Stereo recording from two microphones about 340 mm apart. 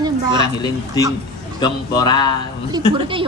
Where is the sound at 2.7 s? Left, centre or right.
Centre.